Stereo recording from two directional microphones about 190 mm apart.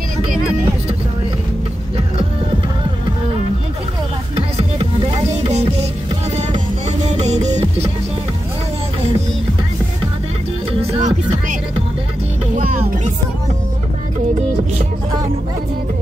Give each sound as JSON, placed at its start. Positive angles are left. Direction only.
{"t": 4.6, "sound": "music", "side_deg": -30}
{"t": 7.1, "sound": "music", "side_deg": -35}
{"t": 10.7, "sound": "music", "side_deg": -30}
{"t": 12.5, "sound": "music", "side_deg": -40}